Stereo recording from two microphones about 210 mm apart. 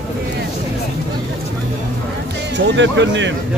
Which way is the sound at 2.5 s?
60° right (ahead or behind).